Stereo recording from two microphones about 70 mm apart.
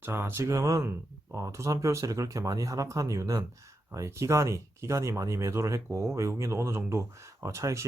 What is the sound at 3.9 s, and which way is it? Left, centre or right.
Speech, right.